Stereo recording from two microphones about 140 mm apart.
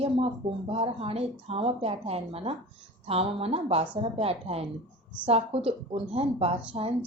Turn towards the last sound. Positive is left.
turn(degrees=-45)  # may be behind; listen again after turning